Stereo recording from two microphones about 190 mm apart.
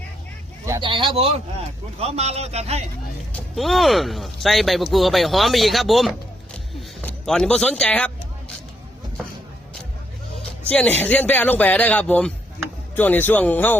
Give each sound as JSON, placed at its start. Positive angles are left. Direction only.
{"t": 0.6, "sound": "speech", "side_deg": -20}
{"t": 3.3, "sound": "speech", "side_deg": 0}
{"t": 10.7, "sound": "speech", "side_deg": 10}